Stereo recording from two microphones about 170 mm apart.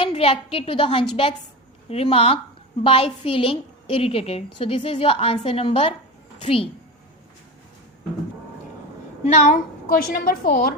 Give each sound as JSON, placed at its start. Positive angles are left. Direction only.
{"t": 0.0, "sound": "a woman's voice", "side_deg": 35}
{"t": 9.2, "sound": "a woman's voice", "side_deg": 40}
{"t": 9.9, "sound": "a woman's voice", "side_deg": 60}